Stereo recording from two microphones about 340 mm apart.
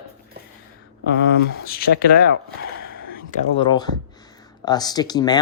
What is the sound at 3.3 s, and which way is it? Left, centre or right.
Speech, centre.